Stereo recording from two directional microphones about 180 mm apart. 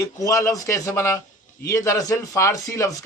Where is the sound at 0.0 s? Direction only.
20° left (ahead or behind).